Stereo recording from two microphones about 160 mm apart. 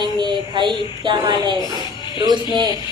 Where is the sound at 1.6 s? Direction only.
30° left (ahead or behind).